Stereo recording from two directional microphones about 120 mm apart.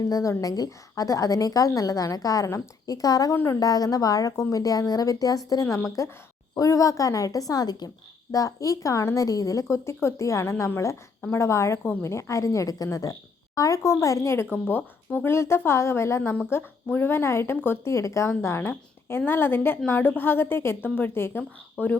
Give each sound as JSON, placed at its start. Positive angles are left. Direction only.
{"t": 0.0, "sound": "a woman's voice", "side_deg": 30}